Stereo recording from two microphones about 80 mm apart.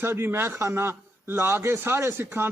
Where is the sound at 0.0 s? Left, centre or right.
Right.